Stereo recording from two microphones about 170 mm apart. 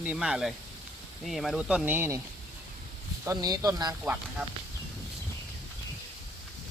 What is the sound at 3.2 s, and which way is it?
Speech, 20° right (ahead or behind).